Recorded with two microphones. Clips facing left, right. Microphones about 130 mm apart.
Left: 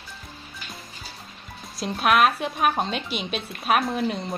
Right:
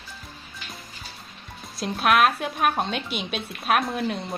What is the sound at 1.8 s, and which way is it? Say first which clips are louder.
A woman's voice: even; centre (ahead or behind).